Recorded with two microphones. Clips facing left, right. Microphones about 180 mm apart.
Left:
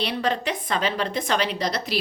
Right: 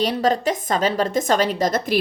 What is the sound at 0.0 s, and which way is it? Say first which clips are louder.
A woman's voice: right 6 dB; 40° right (ahead or behind).